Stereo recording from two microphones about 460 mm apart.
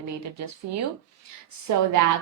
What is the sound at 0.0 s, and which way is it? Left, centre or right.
Speech, right.